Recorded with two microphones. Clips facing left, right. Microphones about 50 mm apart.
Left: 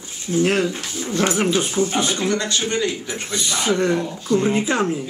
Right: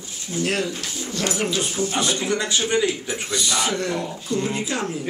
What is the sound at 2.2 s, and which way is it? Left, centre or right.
Speech, centre.